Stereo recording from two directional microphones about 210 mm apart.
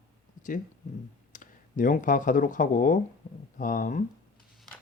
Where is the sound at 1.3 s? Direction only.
40° left (ahead or behind).